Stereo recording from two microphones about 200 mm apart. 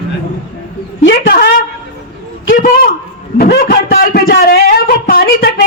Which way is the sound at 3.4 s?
50° left (ahead or behind).